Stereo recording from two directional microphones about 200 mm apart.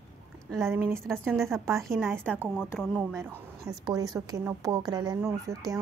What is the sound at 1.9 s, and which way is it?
Speech, 15° right (ahead or behind).